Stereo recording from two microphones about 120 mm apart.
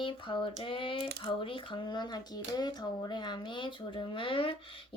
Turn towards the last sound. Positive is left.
turn(degrees=45)  # may be behind; listen again after turning